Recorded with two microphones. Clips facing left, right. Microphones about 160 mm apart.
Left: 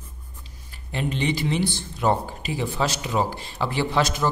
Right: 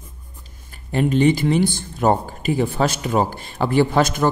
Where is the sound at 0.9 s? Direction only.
45° right (ahead or behind).